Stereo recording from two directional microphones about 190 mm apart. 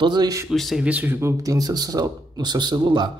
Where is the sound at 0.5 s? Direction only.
Centre (ahead or behind).